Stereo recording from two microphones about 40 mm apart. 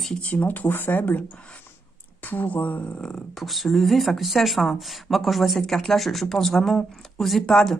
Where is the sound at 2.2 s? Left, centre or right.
Left.